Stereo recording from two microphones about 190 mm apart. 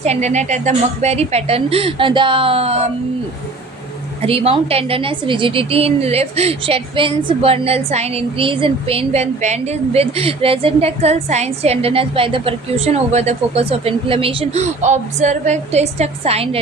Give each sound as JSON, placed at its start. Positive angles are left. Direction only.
{"t": 0.0, "sound": "a woman's voice", "side_deg": -35}
{"t": 4.2, "sound": "a woman's voice", "side_deg": -30}